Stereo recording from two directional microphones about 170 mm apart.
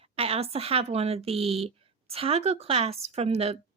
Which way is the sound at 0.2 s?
35° right (ahead or behind).